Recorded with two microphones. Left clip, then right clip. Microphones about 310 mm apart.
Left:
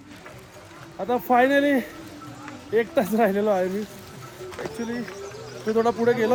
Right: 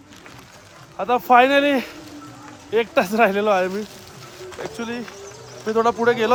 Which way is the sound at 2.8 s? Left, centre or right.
Centre.